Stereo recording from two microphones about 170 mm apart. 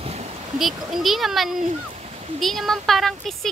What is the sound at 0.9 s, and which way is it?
Speech, centre (ahead or behind).